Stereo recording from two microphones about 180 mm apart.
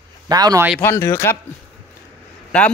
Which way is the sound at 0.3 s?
20° right (ahead or behind).